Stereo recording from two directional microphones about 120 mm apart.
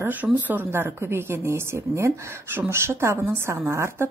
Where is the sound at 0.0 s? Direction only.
15° right (ahead or behind).